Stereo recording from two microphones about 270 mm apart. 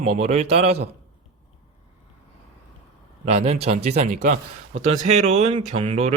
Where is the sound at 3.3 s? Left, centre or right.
Right.